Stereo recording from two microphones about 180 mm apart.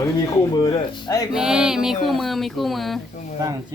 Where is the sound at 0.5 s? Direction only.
25° left (ahead or behind).